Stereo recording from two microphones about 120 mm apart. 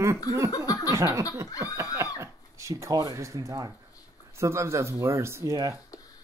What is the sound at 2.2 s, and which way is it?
Speech, 25° right (ahead or behind).